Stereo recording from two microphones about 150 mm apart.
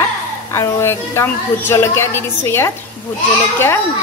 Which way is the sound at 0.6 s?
20° left (ahead or behind).